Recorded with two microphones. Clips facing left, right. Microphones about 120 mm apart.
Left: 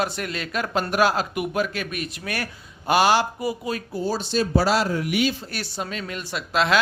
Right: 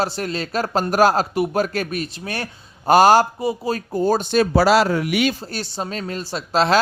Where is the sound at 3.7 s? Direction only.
50° right (ahead or behind); by 5.3 s 70° right (ahead or behind).